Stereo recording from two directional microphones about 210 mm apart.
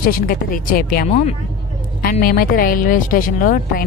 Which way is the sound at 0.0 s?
45° left (ahead or behind).